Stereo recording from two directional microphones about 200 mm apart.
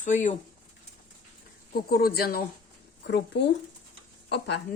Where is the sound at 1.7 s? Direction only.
50° left (ahead or behind).